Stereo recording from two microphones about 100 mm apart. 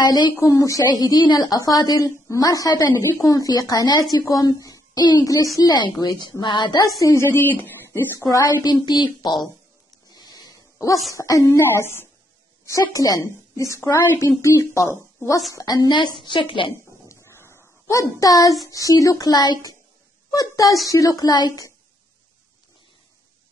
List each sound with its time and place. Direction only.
0.0 s speech: 45° left (ahead or behind)
0.4 s a woman's voice: 30° left (ahead or behind)
7.0 s a woman's voice: 35° left (ahead or behind)
7.2 s speech: 20° left (ahead or behind)
8.6 s a woman's voice: 45° left (ahead or behind)
10.0 s dog: 40° left (ahead or behind)
11.1 s speech: 35° left (ahead or behind)
12.6 s a woman's voice: 35° left (ahead or behind); by 16.7 s 55° left (ahead or behind)
17.1 s a sound: 25° left (ahead or behind)
18.7 s a woman's voice: 35° left (ahead or behind)